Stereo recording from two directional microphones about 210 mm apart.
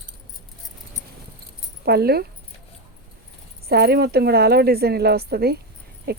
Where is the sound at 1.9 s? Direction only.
50° right (ahead or behind).